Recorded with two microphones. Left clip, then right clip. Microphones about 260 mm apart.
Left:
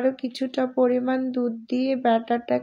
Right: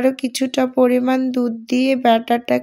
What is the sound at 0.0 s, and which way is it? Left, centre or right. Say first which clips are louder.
Speech: right 6 dB; right.